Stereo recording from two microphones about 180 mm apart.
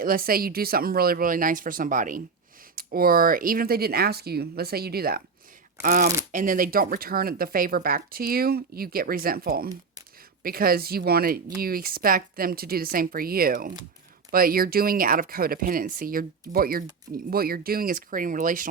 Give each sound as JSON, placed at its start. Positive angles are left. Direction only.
{"t": 0.0, "sound": "speech", "side_deg": -55}